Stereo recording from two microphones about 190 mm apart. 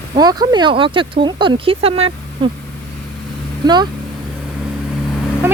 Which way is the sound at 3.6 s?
20° right (ahead or behind).